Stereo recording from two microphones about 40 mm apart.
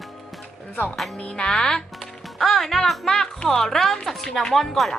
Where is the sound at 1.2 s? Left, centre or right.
Left.